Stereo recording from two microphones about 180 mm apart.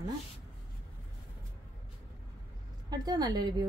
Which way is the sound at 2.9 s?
20° right (ahead or behind).